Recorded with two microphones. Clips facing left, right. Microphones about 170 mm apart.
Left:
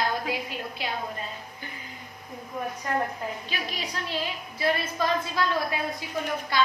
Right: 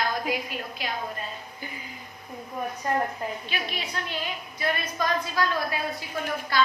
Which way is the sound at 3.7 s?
35° left (ahead or behind).